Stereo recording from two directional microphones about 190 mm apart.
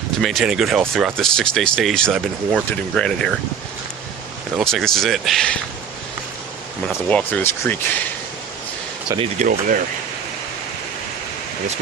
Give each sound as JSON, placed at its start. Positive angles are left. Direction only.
{"t": 0.2, "sound": "speech", "side_deg": 0}
{"t": 4.5, "sound": "speech", "side_deg": 0}
{"t": 6.8, "sound": "speech", "side_deg": 5}
{"t": 9.1, "sound": "speech", "side_deg": -30}
{"t": 9.5, "sound": "speech", "side_deg": -45}